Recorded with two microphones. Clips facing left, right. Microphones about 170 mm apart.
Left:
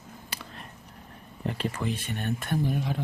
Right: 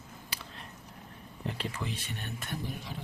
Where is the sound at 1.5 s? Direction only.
50° left (ahead or behind).